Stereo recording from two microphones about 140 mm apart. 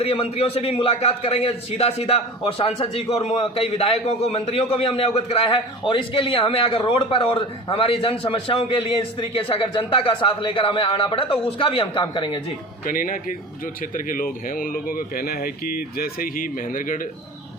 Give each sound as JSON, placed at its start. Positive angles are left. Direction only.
{"t": 0.0, "sound": "a man's voice", "side_deg": 45}
{"t": 12.8, "sound": "speech", "side_deg": 75}